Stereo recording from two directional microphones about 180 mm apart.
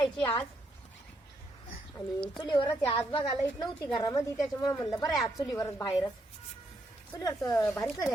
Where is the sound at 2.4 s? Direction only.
25° left (ahead or behind).